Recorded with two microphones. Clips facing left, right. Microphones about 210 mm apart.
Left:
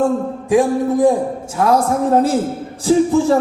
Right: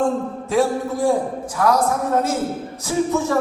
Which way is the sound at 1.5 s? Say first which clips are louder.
Left 3 dB; 25° left (ahead or behind).